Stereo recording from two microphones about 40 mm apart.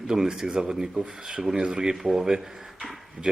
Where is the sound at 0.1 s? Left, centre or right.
Centre.